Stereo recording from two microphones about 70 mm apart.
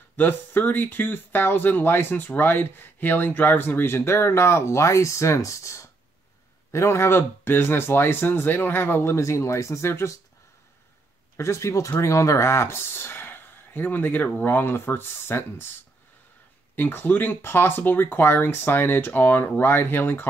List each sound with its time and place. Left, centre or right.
0.1 s speech: left
11.3 s speech: left
16.7 s speech: left